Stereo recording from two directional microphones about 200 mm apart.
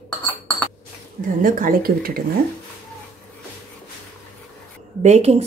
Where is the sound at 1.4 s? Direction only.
45° right (ahead or behind).